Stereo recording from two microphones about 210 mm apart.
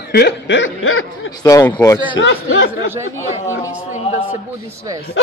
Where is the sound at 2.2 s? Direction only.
65° left (ahead or behind).